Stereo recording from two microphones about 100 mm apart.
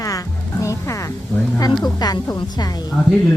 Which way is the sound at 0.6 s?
30° left (ahead or behind).